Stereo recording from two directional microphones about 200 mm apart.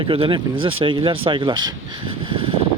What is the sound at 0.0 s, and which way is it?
Speech, 25° right (ahead or behind).